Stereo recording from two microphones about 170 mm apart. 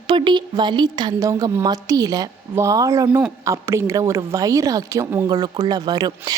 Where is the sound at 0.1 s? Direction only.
25° right (ahead or behind).